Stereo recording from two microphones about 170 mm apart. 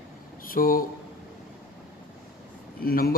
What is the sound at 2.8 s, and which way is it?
Speech, 60° left (ahead or behind).